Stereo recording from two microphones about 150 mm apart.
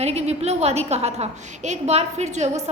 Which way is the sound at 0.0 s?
45° right (ahead or behind).